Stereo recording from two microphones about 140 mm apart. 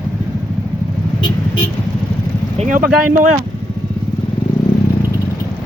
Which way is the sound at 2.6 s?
65° right (ahead or behind).